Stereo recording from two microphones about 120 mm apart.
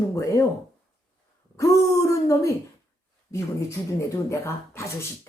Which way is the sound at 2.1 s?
25° left (ahead or behind).